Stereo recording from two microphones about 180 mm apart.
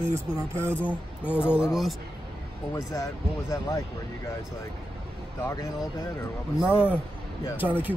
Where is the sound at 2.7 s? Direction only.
20° left (ahead or behind).